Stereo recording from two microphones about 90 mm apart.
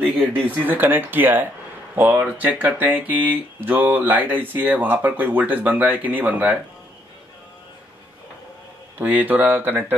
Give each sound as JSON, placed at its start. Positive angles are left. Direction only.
{"t": 0.7, "sound": "speech", "side_deg": -20}
{"t": 8.9, "sound": "speech", "side_deg": -20}